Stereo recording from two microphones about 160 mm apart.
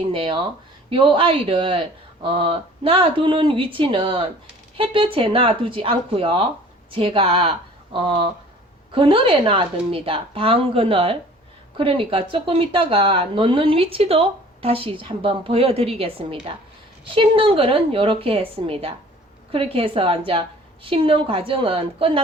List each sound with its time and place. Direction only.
0.1 s a woman's voice: 35° right (ahead or behind)